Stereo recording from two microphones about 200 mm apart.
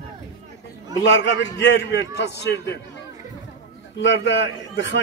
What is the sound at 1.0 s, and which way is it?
A man's voice, 60° left (ahead or behind).